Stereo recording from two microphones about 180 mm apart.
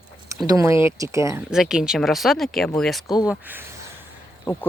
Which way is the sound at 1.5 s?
5° right (ahead or behind).